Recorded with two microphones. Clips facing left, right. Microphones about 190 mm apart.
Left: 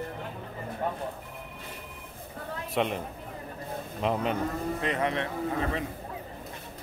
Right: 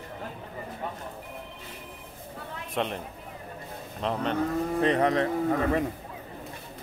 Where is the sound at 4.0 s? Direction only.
5° left (ahead or behind).